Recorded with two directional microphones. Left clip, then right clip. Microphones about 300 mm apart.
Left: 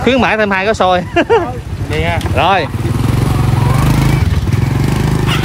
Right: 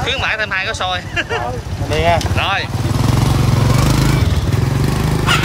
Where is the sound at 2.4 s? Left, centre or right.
Centre.